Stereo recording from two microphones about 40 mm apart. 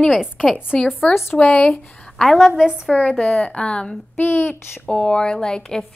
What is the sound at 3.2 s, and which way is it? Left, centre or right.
Speech, left.